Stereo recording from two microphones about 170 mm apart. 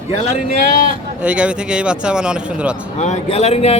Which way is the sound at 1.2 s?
5° right (ahead or behind).